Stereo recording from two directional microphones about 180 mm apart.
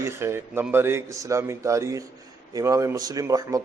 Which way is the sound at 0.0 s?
15° right (ahead or behind).